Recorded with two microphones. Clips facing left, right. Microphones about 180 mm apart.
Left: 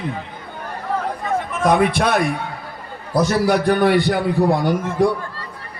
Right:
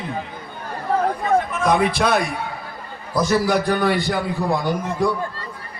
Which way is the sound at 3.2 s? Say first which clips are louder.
Left 2 dB; 65° left (ahead or behind).